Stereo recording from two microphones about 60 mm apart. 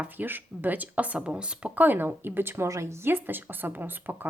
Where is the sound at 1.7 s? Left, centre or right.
Right.